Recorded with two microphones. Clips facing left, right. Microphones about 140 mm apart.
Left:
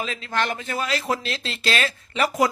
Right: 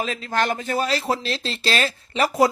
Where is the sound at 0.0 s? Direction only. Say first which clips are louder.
Right 3 dB; 40° right (ahead or behind).